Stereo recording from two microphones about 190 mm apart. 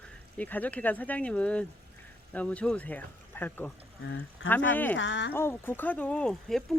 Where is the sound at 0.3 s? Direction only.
10° left (ahead or behind).